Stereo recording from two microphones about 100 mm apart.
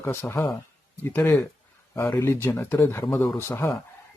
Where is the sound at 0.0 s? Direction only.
25° left (ahead or behind).